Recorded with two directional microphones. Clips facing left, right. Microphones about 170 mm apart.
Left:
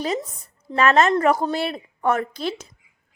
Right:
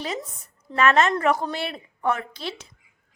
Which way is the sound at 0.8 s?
35° left (ahead or behind).